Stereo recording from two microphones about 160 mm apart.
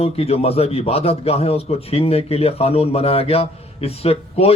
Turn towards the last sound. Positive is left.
turn(degrees=40)  # may be behind; listen again after turning